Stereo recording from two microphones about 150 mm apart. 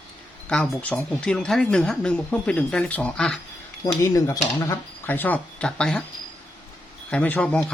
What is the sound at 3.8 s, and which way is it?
Speech, 20° left (ahead or behind).